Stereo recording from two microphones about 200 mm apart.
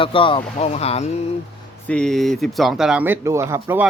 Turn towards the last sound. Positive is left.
turn(degrees=-10)  # may be behind; listen again after turning